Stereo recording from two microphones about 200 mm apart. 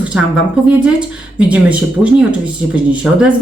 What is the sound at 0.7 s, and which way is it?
A woman's voice, 5° right (ahead or behind).